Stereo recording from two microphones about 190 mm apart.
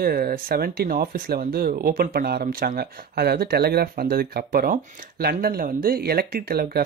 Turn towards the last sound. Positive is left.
turn(degrees=-55)  # may be behind; listen again after turning